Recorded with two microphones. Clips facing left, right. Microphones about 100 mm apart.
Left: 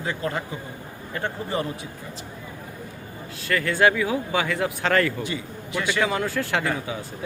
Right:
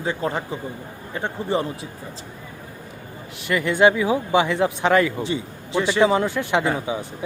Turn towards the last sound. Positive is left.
turn(degrees=-20)  # may be behind; listen again after turning